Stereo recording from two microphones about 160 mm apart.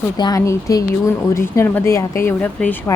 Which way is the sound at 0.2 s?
20° left (ahead or behind).